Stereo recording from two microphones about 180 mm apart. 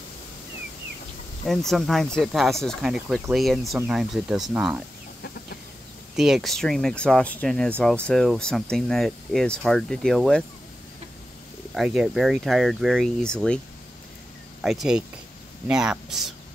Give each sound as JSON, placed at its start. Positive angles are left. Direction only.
{"t": 1.5, "sound": "speech", "side_deg": 0}
{"t": 6.1, "sound": "speech", "side_deg": 0}
{"t": 11.7, "sound": "speech", "side_deg": -5}
{"t": 14.6, "sound": "speech", "side_deg": 0}